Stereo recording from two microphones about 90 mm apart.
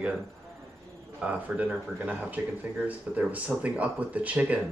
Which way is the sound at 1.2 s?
10° right (ahead or behind).